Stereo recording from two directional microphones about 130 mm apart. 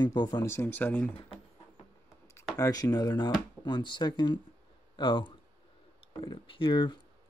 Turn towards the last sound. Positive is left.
turn(degrees=40)  # may be behind; listen again after turning